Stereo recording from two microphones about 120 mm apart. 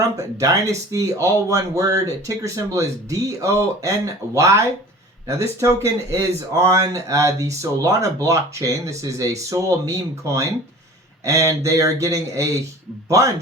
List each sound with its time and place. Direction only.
0.2 s speech: 25° right (ahead or behind)